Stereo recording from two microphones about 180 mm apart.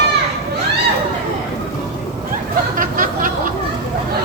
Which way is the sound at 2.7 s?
50° right (ahead or behind).